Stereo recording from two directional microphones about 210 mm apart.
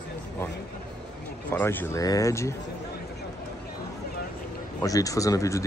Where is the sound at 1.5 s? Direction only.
10° left (ahead or behind).